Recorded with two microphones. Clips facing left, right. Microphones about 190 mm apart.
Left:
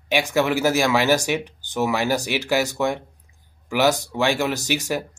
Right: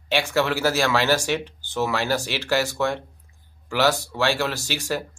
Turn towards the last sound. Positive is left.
turn(degrees=15)  # may be behind; listen again after turning